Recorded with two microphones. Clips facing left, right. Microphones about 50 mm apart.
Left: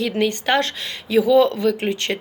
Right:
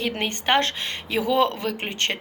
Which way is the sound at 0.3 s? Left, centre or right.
Right.